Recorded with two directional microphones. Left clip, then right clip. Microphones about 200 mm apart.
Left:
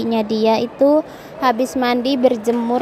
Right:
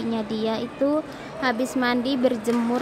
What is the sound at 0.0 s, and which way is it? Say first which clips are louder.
A woman's voice: left 9 dB; 30° left (ahead or behind).